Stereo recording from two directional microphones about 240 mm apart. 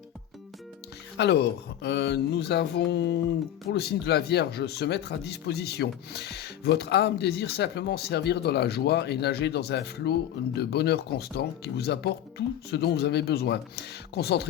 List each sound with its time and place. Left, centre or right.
1.1 s speech: left